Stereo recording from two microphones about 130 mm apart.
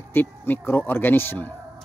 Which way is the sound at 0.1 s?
15° left (ahead or behind).